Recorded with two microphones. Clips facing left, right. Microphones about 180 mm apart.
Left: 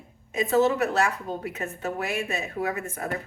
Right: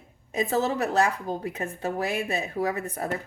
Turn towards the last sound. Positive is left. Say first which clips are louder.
# right 2 dB
turn(degrees=-35)  # may be behind; listen again after turning